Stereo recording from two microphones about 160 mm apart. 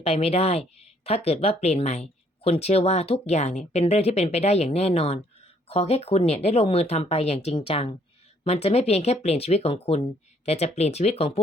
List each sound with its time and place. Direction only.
0.0 s speech: 40° left (ahead or behind)